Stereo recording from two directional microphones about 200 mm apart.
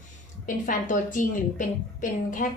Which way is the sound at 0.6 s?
40° left (ahead or behind).